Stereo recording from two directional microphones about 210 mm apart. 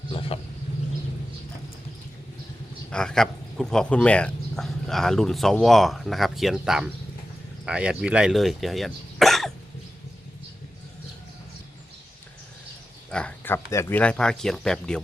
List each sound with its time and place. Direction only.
0.1 s a sound: 25° left (ahead or behind)
2.9 s speech: 5° left (ahead or behind)
13.1 s speech: 5° left (ahead or behind)